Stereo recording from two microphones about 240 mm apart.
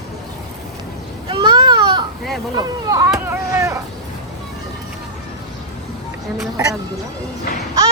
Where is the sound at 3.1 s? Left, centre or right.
Centre.